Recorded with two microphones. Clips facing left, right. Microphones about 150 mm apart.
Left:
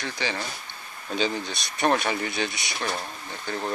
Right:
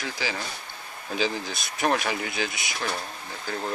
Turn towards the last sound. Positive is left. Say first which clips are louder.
# left 1 dB
turn(degrees=-5)  # may be behind; listen again after turning